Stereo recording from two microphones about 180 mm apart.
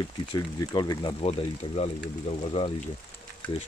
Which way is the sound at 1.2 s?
35° left (ahead or behind).